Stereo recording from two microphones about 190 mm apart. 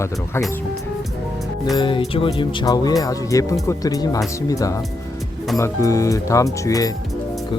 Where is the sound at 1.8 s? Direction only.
25° left (ahead or behind).